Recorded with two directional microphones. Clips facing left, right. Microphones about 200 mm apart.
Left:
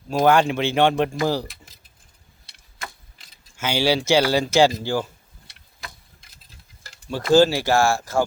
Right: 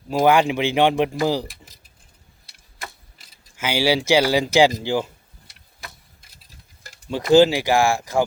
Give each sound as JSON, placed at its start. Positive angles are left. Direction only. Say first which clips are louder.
{"t": 0.1, "sound": "speech", "louder": "right 1 dB", "side_deg": -10}
{"t": 3.2, "sound": "speech", "louder": "even", "side_deg": -10}
{"t": 6.8, "sound": "speech", "louder": "right 1 dB", "side_deg": -15}